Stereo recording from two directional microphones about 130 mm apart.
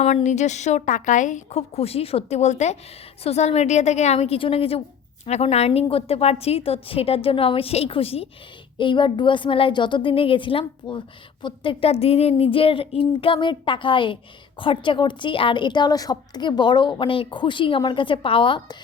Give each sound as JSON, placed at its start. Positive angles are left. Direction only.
{"t": 0.0, "sound": "a woman's voice", "side_deg": 65}
{"t": 8.8, "sound": "speech", "side_deg": 40}